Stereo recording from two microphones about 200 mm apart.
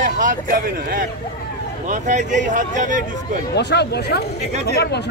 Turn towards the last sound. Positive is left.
turn(degrees=55)  # may be behind; listen again after turning